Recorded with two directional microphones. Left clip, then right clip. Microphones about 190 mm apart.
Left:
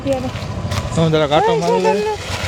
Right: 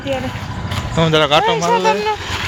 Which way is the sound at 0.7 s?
10° left (ahead or behind).